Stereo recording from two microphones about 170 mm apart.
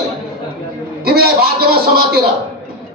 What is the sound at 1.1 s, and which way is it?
A man's voice, 65° right (ahead or behind).